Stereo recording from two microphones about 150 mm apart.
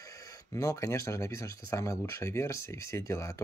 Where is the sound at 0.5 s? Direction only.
20° left (ahead or behind).